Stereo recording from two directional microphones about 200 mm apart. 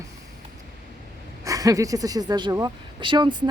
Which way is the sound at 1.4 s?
15° right (ahead or behind).